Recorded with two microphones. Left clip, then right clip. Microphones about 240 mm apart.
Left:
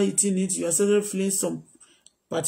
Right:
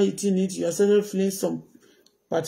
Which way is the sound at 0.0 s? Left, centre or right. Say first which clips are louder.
Right 2 dB; centre.